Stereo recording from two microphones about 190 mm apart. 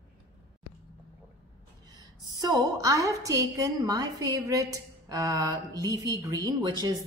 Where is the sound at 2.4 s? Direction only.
20° right (ahead or behind).